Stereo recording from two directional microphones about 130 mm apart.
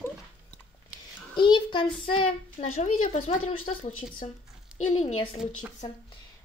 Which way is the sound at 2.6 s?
65° left (ahead or behind).